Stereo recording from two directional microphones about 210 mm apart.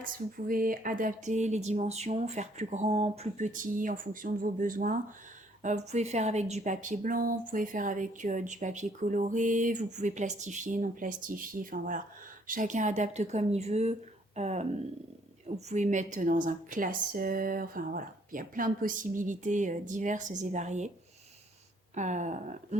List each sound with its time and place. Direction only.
0.0 s a woman's voice: 40° right (ahead or behind)
21.9 s a woman's voice: 35° right (ahead or behind)